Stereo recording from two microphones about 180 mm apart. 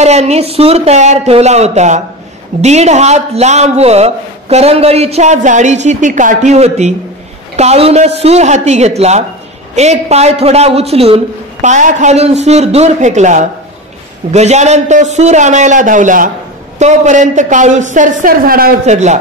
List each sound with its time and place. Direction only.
0.0 s a man's voice: 35° right (ahead or behind)